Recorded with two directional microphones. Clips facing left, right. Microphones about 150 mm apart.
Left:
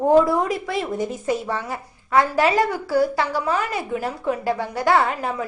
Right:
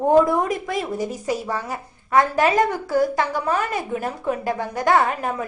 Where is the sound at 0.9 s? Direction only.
10° right (ahead or behind).